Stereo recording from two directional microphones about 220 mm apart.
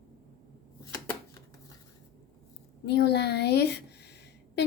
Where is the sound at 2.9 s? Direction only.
50° left (ahead or behind).